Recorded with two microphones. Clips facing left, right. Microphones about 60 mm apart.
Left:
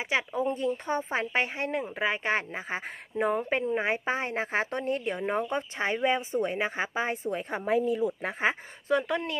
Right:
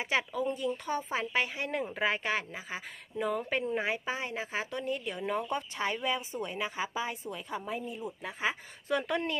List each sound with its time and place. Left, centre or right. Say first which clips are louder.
0.3 s speech: left 4 dB; left
1.7 s speech: left 2 dB; centre
2.2 s speech: left 4 dB; left
7.7 s speech: left 16 dB; left
8.2 s speech: left 5 dB; left